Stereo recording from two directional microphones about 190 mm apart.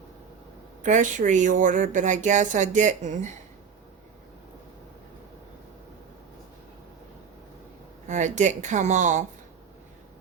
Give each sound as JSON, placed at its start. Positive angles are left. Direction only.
{"t": 0.8, "sound": "speech", "side_deg": -40}
{"t": 8.0, "sound": "speech", "side_deg": -40}